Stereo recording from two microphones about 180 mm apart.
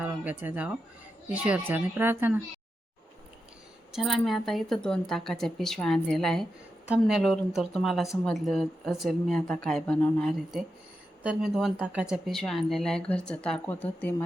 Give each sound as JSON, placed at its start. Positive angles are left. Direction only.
{"t": 0.0, "sound": "speech", "side_deg": -10}
{"t": 3.9, "sound": "speech", "side_deg": 0}